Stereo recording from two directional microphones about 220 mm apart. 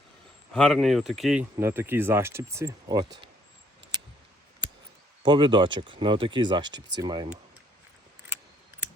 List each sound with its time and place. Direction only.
0.5 s speech: centre (ahead or behind); by 3.1 s 15° right (ahead or behind)
5.2 s speech: 20° right (ahead or behind)